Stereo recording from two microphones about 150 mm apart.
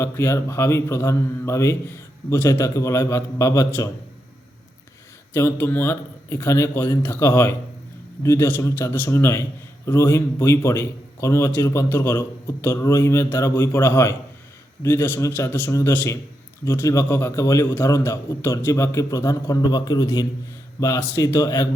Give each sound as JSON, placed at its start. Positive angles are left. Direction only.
{"t": 0.0, "sound": "a man's voice", "side_deg": 15}
{"t": 5.3, "sound": "a man's voice", "side_deg": 15}